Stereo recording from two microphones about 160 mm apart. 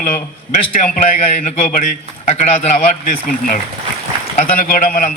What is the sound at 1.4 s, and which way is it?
Speech, 50° left (ahead or behind).